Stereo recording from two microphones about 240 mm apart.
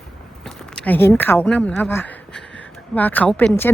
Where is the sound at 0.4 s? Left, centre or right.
Centre.